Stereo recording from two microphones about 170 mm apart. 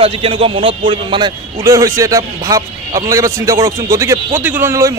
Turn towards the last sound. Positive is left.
turn(degrees=-15)  # may be behind; listen again after turning